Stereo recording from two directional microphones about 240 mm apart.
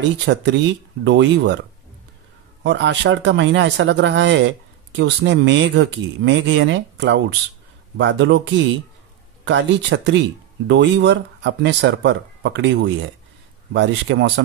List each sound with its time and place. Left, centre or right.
0.2 s speech: right
2.6 s speech: right